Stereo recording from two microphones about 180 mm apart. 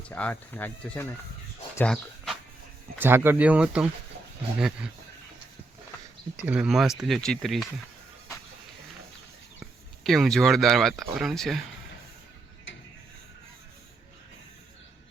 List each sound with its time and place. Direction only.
0.1 s speech: 10° left (ahead or behind)
1.7 s a sound: 5° left (ahead or behind)
3.0 s speech: 10° right (ahead or behind)
6.3 s speech: 5° right (ahead or behind)
10.0 s speech: centre (ahead or behind)